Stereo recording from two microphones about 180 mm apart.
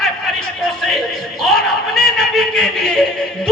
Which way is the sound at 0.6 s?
Centre (ahead or behind).